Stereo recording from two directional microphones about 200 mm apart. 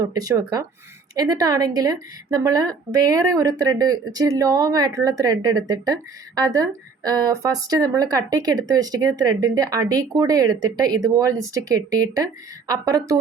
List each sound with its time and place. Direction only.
0.0 s speech: 20° right (ahead or behind)